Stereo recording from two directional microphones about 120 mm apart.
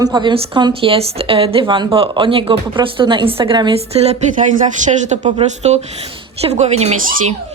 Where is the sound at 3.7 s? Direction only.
65° right (ahead or behind).